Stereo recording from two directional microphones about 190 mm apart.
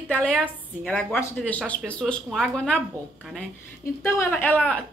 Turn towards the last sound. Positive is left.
turn(degrees=5)  # may be behind; listen again after turning